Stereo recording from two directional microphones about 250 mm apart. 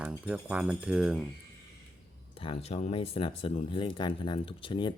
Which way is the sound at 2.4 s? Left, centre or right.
Left.